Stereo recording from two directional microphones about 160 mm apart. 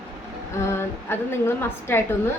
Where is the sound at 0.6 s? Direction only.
15° left (ahead or behind).